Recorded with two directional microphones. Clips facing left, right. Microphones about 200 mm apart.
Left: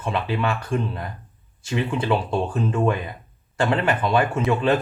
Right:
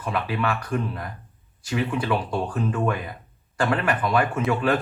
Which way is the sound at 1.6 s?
25° left (ahead or behind).